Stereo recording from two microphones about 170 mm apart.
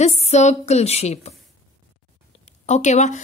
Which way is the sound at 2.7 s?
45° left (ahead or behind).